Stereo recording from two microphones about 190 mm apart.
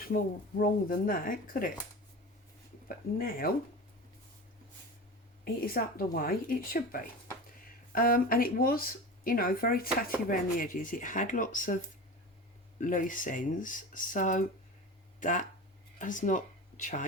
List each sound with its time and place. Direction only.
0.1 s speech: 55° left (ahead or behind)
3.2 s speech: 50° left (ahead or behind)
5.6 s speech: 50° left (ahead or behind)
12.8 s speech: 45° left (ahead or behind)